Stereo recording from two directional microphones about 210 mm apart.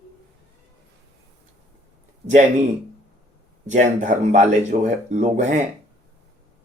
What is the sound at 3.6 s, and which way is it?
Speech, 35° right (ahead or behind).